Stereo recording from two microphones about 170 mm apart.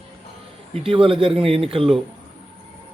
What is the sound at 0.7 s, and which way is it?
A man's voice, 30° right (ahead or behind).